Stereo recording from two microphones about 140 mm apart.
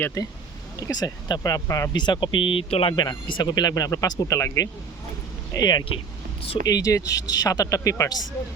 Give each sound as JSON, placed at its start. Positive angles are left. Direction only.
{"t": 0.0, "sound": "speech", "side_deg": 20}